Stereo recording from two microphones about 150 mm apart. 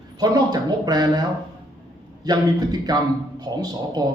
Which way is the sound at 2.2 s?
25° right (ahead or behind).